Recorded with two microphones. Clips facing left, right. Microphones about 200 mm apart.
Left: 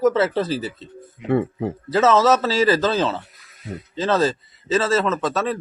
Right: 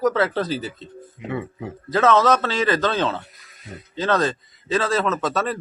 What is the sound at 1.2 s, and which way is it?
Speech, 50° left (ahead or behind).